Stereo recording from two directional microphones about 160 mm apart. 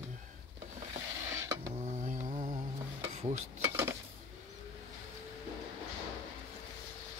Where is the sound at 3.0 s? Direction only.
45° right (ahead or behind).